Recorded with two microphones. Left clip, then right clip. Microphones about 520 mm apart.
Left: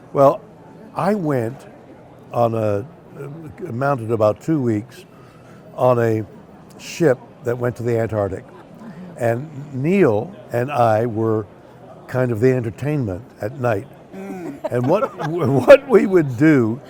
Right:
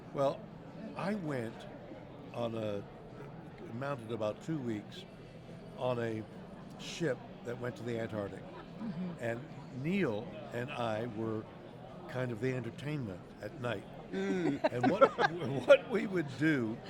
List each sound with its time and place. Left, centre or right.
0.1 s a man's voice: left
2.3 s a man's voice: left
14.3 s a sound: right
15.4 s speech: left